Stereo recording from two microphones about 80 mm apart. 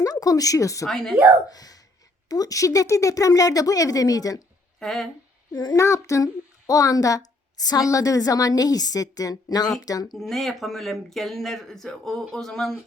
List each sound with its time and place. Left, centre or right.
0.0 s speech: left
0.9 s a woman's voice: centre
1.5 s a woman's voice: left
4.8 s speech: centre
5.5 s a child's voice: left
5.7 s a woman's voice: left
10.2 s speech: centre